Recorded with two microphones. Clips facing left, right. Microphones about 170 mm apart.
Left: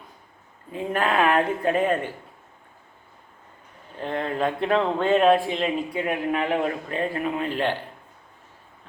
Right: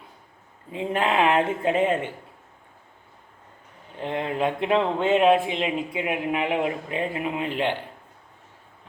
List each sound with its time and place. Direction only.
0.7 s speech: 20° right (ahead or behind)
3.9 s speech: 15° right (ahead or behind)